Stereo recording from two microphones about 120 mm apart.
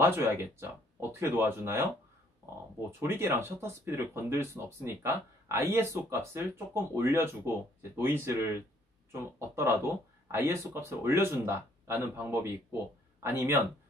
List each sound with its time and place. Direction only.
0.0 s speech: 20° right (ahead or behind)
3.0 s speech: 20° right (ahead or behind)